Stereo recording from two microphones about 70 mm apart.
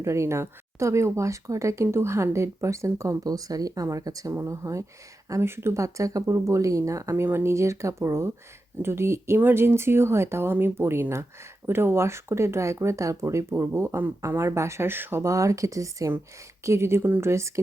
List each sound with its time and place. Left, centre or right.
0.0 s speech: right
3.2 s speech: right
4.4 s speech: right
5.4 s speech: right
7.3 s speech: right
15.2 s speech: right
16.6 s speech: right